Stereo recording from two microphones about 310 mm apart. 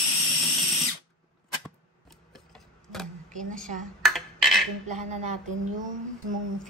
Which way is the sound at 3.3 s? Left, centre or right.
Right.